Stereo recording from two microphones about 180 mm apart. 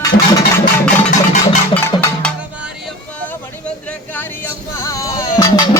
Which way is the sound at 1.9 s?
25° left (ahead or behind).